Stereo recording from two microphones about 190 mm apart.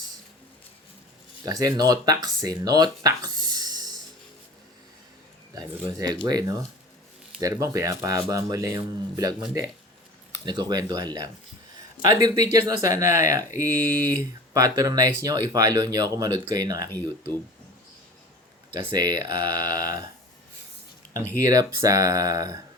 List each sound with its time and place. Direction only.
1.5 s speech: 20° right (ahead or behind)
5.5 s speech: 15° right (ahead or behind)
18.9 s speech: 20° right (ahead or behind)
21.2 s speech: 15° right (ahead or behind)